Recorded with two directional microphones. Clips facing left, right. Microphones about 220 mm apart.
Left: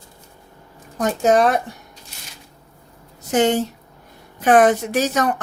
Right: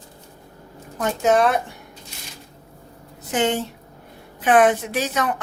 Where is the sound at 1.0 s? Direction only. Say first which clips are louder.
Left 2 dB; 40° left (ahead or behind).